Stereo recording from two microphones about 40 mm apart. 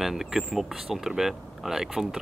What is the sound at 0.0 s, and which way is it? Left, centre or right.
Speech, centre.